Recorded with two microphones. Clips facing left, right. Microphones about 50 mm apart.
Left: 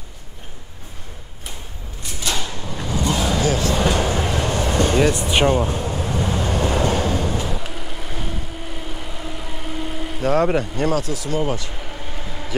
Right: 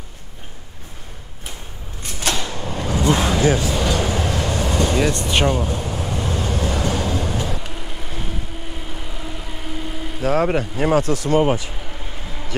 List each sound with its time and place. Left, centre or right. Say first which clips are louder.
2.5 s a sound: right 3 dB; right
3.3 s a sound: right 3 dB; right
3.7 s a sound: left 1 dB; left
4.3 s train: left 1 dB; left
4.9 s speech: left 2 dB; centre
5.5 s speech: left 3 dB; left
5.8 s train: left 2 dB; left
7.5 s vehicle: left 1 dB; centre
11.1 s speech: right 6 dB; right